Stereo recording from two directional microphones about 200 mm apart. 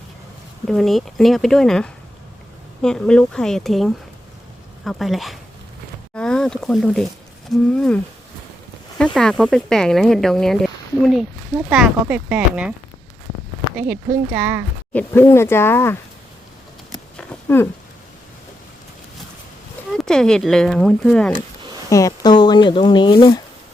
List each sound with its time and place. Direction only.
0.7 s speech: centre (ahead or behind)
9.1 s speech: 5° left (ahead or behind)
13.7 s speech: 5° right (ahead or behind)
14.9 s speech: 10° left (ahead or behind)
17.2 s a sound: 10° left (ahead or behind)
19.9 s speech: centre (ahead or behind)
21.8 s speech: 15° left (ahead or behind)